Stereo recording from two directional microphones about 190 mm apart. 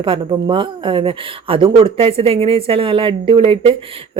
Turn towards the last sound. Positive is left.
turn(degrees=-30)  # may be behind; listen again after turning